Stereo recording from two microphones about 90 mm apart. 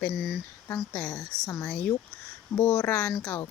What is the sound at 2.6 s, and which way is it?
Speech, 10° left (ahead or behind).